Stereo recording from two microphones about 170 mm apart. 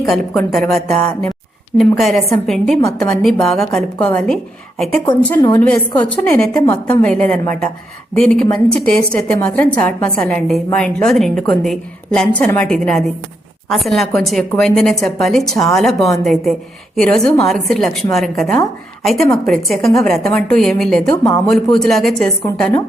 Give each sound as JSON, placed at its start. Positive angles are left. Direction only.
{"t": 0.0, "sound": "a woman's voice", "side_deg": 0}
{"t": 1.8, "sound": "a woman's voice", "side_deg": 0}
{"t": 21.0, "sound": "speech", "side_deg": 20}
{"t": 21.5, "sound": "a woman's voice", "side_deg": 5}